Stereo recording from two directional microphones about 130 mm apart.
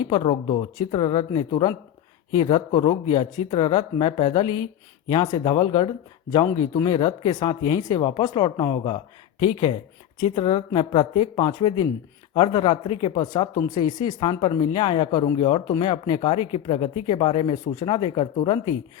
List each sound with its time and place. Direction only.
0.1 s speech: 40° left (ahead or behind)
17.5 s speech: 30° left (ahead or behind)